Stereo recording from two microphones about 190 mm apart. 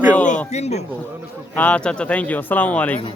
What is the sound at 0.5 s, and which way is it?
Speech, 35° left (ahead or behind).